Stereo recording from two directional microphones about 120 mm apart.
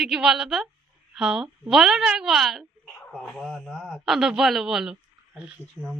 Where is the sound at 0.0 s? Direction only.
5° right (ahead or behind).